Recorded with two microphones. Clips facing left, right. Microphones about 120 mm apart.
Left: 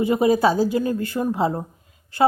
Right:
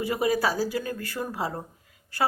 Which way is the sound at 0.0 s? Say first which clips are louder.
Left 7 dB; 25° left (ahead or behind).